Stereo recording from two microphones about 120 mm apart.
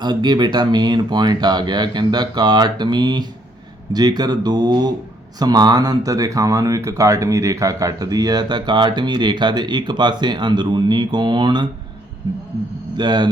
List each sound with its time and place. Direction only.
0.0 s speech: 35° right (ahead or behind)
13.0 s speech: 40° right (ahead or behind)